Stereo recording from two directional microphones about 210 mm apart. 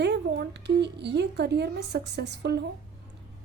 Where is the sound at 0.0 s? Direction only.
55° right (ahead or behind).